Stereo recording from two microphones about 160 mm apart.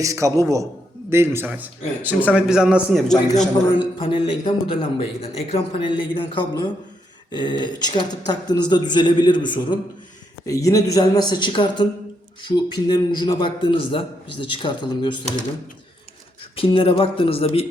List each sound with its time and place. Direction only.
0.0 s a man's voice: 20° right (ahead or behind); by 3.2 s 5° right (ahead or behind)
3.8 s a man's voice: 30° left (ahead or behind)
16.6 s a man's voice: 35° left (ahead or behind)